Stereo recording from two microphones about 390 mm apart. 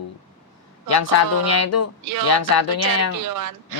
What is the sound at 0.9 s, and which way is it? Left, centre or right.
Speech, left.